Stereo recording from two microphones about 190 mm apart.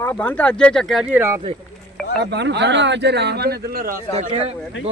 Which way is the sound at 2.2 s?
60° right (ahead or behind).